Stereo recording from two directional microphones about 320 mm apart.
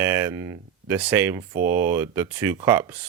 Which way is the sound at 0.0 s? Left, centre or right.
Centre.